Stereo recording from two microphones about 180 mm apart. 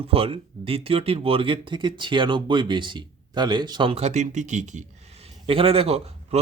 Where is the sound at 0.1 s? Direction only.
30° right (ahead or behind).